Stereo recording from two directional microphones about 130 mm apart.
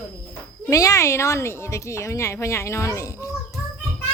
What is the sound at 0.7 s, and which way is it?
Speech, 25° left (ahead or behind).